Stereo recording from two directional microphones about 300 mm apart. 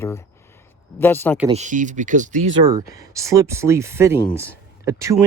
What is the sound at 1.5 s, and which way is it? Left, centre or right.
Speech, right.